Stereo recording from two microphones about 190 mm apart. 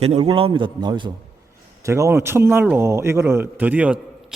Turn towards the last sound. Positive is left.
turn(degrees=-5)  # may be behind; listen again after turning